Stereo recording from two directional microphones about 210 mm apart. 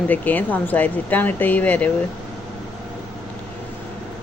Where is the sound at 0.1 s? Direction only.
10° left (ahead or behind).